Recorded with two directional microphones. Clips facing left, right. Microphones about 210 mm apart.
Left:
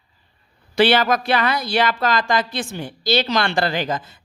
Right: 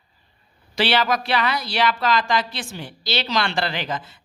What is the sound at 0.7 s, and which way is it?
Speech, 50° left (ahead or behind).